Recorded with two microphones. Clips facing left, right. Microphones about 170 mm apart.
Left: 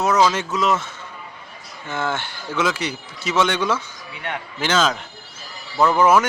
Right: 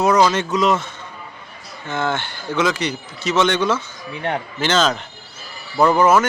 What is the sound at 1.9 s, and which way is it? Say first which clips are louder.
A man's voice: right 3 dB; 5° left (ahead or behind).